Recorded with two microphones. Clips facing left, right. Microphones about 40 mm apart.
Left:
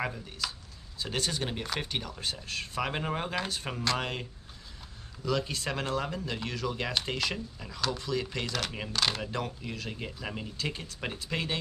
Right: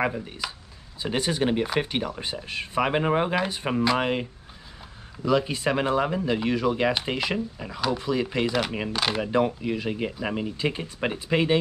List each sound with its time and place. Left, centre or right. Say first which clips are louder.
0.0 s speech: right 7 dB; right